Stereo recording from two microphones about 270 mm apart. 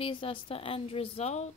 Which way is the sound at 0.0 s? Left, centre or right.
Centre.